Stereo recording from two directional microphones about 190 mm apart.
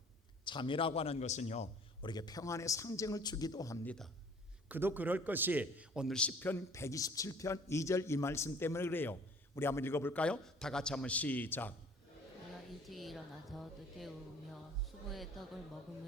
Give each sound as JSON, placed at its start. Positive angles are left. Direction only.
{"t": 0.4, "sound": "a man's voice", "side_deg": 25}
{"t": 2.0, "sound": "a man's voice", "side_deg": 20}
{"t": 3.8, "sound": "a woman's voice", "side_deg": 0}
{"t": 4.7, "sound": "a man's voice", "side_deg": -10}
{"t": 12.9, "sound": "a woman's voice", "side_deg": 0}
{"t": 15.1, "sound": "a woman's voice", "side_deg": 0}